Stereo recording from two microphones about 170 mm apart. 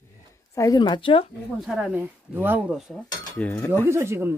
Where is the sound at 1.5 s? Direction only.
5° right (ahead or behind).